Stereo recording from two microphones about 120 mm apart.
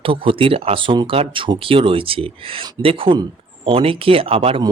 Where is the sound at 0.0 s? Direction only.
50° right (ahead or behind).